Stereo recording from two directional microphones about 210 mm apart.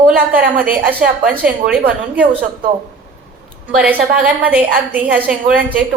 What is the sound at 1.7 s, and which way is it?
Speech, 5° right (ahead or behind).